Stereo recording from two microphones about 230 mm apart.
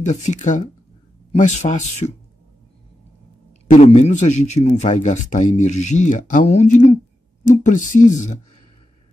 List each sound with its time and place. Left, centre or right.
0.0 s speech: left
3.6 s speech: left